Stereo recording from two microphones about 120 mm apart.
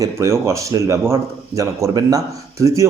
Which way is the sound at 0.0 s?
25° right (ahead or behind).